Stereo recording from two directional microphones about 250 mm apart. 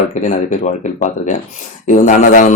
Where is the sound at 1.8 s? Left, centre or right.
Left.